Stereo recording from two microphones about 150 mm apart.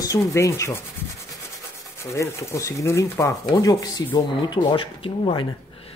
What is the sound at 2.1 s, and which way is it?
Speech, 20° left (ahead or behind).